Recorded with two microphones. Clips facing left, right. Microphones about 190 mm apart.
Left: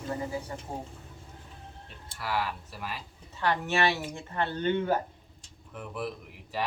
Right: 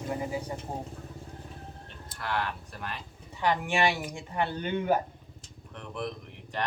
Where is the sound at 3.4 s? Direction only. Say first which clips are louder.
Right 1 dB; 15° right (ahead or behind).